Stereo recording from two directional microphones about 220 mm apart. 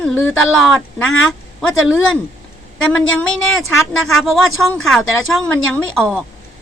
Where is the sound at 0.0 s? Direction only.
5° left (ahead or behind).